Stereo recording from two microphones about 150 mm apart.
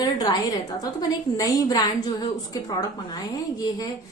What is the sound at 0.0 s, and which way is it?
A woman's voice, 25° left (ahead or behind).